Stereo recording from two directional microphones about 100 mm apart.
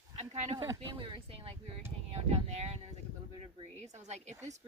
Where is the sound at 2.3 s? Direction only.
90° right.